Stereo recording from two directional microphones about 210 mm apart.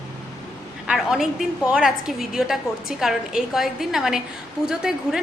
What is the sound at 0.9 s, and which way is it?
A woman's voice, centre (ahead or behind).